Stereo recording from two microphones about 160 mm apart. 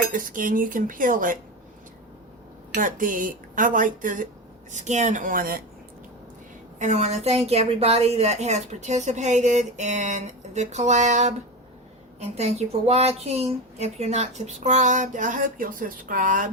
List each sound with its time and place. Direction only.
0.1 s speech: 60° right (ahead or behind)
2.7 s a woman's voice: 55° right (ahead or behind)
6.7 s a woman's voice: 45° right (ahead or behind)